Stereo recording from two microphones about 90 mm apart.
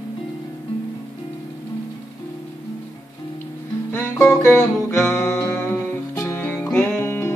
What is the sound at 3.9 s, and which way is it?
Music, 25° left (ahead or behind).